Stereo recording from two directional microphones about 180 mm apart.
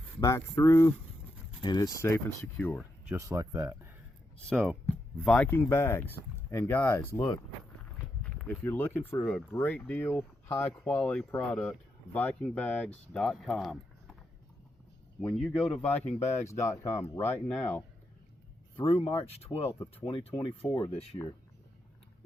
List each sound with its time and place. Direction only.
0.2 s speech: 15° left (ahead or behind)
3.1 s speech: 15° right (ahead or behind)
4.4 s speech: centre (ahead or behind)
15.2 s speech: 5° left (ahead or behind)
18.8 s speech: 30° left (ahead or behind)